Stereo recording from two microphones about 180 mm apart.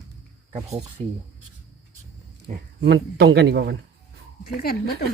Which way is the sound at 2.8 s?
65° right (ahead or behind).